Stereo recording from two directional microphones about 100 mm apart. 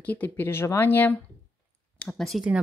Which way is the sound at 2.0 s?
5° left (ahead or behind).